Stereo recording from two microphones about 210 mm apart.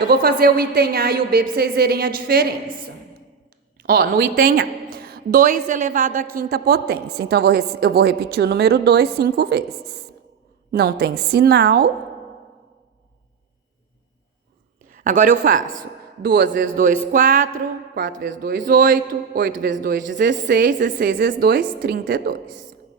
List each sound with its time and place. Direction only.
0.0 s a woman's voice: 45° right (ahead or behind)
3.8 s a woman's voice: 45° right (ahead or behind)
14.8 s a woman's voice: 40° right (ahead or behind)
16.2 s a man's voice: 55° right (ahead or behind)
16.5 s a man's voice: 40° right (ahead or behind)